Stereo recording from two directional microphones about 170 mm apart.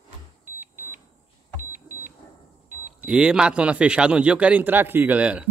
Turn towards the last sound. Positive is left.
turn(degrees=-5)  # may be behind; listen again after turning